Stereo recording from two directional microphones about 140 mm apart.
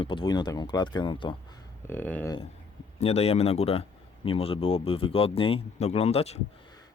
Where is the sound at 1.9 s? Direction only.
15° left (ahead or behind).